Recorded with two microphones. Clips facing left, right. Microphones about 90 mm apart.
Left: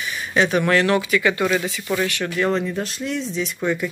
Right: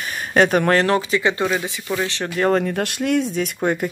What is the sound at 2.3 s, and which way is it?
Speech, 45° right (ahead or behind).